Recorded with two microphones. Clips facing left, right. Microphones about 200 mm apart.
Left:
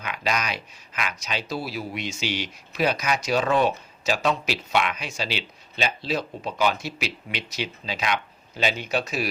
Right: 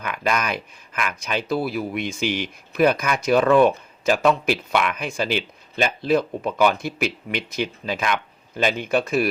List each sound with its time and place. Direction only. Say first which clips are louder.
0.0 s speech: right 4 dB; 50° right (ahead or behind)